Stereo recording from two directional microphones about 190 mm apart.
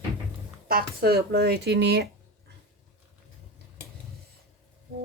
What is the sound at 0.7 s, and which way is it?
Speech, 55° right (ahead or behind).